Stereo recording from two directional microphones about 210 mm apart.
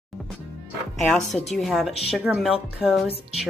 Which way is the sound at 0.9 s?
Centre (ahead or behind).